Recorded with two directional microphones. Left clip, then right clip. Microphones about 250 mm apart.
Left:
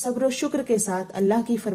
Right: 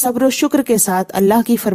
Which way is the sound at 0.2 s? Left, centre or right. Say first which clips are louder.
Right 8 dB; right.